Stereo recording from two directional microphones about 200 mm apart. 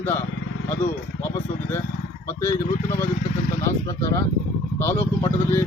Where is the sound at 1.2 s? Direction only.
10° left (ahead or behind).